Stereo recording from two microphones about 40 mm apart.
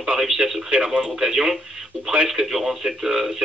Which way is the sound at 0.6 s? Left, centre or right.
Right.